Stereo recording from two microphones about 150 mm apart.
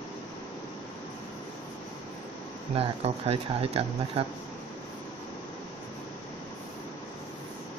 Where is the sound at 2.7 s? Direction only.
40° right (ahead or behind).